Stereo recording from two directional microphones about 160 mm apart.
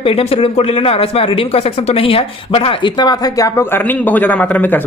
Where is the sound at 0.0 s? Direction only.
35° left (ahead or behind).